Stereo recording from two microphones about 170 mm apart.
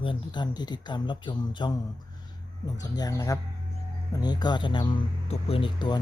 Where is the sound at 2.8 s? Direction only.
20° left (ahead or behind).